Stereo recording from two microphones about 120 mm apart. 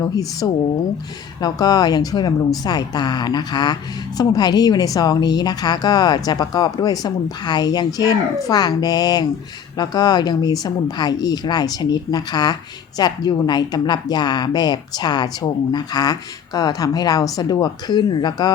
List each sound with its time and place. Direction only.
0.0 s speech: 30° left (ahead or behind)